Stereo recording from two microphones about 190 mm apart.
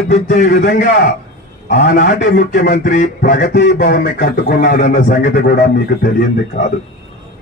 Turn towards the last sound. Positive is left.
turn(degrees=50)  # may be behind; listen again after turning